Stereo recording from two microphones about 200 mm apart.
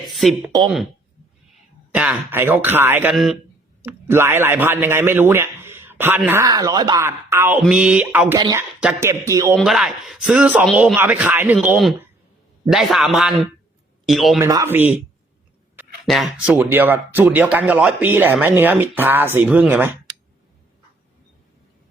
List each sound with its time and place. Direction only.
0.2 s speech: centre (ahead or behind)
1.9 s speech: 5° right (ahead or behind)
8.4 s speech: 20° right (ahead or behind)
9.6 s speech: centre (ahead or behind)
14.4 s speech: 15° right (ahead or behind)